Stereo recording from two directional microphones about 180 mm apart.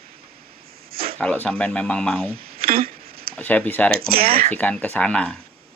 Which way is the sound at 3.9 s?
55° right (ahead or behind).